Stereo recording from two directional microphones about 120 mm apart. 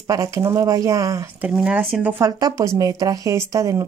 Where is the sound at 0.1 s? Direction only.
25° right (ahead or behind).